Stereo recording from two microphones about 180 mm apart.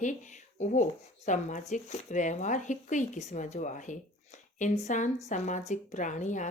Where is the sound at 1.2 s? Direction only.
45° left (ahead or behind).